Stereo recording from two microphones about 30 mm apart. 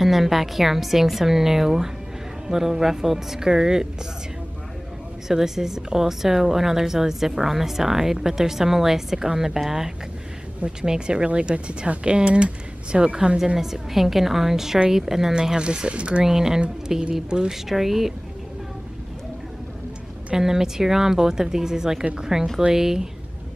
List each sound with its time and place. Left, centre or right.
0.0 s a woman's voice: centre
5.3 s a woman's voice: centre
10.9 s speech: right
11.2 s speech: right
13.6 s a woman's voice: centre
15.5 s speech: right
15.9 s speech: right
16.3 s a woman's voice: centre
20.3 s a woman's voice: centre